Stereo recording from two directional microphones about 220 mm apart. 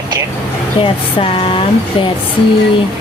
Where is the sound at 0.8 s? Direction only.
25° left (ahead or behind).